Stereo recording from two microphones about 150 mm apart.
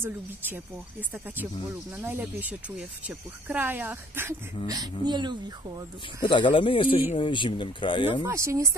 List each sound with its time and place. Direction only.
2.0 s speech: 10° right (ahead or behind)
4.6 s speech: 25° right (ahead or behind)
6.2 s speech: 30° left (ahead or behind)
8.2 s speech: 20° right (ahead or behind)